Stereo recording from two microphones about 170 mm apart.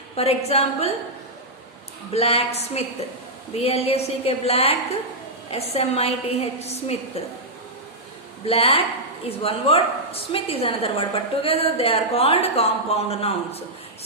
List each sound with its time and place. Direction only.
0.2 s a woman's voice: 35° left (ahead or behind)
2.1 s a woman's voice: 35° left (ahead or behind)
8.4 s a woman's voice: 35° left (ahead or behind)